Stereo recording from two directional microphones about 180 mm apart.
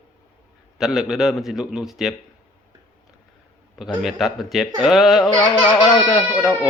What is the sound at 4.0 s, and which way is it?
A man's voice, centre (ahead or behind).